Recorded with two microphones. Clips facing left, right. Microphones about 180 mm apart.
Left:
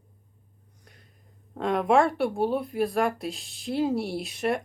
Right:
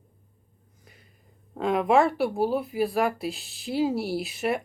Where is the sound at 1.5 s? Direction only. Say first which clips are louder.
Right 1 dB; centre (ahead or behind).